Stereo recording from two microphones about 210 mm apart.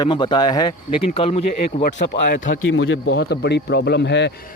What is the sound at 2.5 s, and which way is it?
Speech, 70° left (ahead or behind).